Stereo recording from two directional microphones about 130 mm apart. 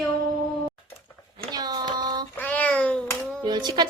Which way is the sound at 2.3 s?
10° left (ahead or behind).